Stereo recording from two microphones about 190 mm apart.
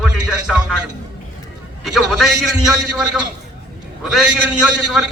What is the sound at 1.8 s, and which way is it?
A man's voice, centre (ahead or behind).